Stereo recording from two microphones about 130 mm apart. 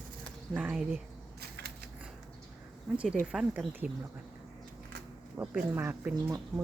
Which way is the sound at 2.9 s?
10° right (ahead or behind).